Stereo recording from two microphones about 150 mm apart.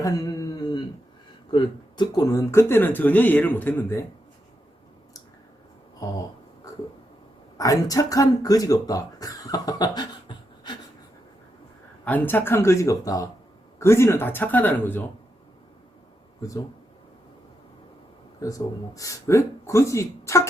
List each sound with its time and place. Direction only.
0.0 s a sound: 25° left (ahead or behind)
1.5 s speech: 30° left (ahead or behind); by 4.0 s 15° left (ahead or behind)
7.6 s speech: 25° left (ahead or behind)
12.0 s speech: 10° left (ahead or behind)
18.3 s speech: 20° left (ahead or behind)